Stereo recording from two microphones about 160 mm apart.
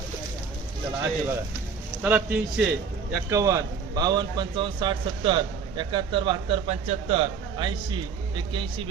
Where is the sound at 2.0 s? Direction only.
10° right (ahead or behind).